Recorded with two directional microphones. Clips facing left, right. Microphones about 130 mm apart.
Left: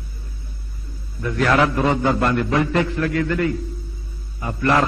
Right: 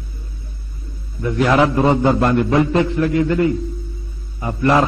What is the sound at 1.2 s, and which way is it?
A man's voice, 20° right (ahead or behind).